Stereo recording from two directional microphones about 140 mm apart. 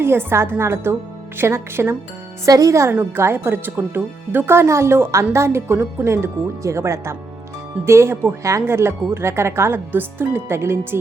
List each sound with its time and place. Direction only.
0.0 s speech: 15° right (ahead or behind)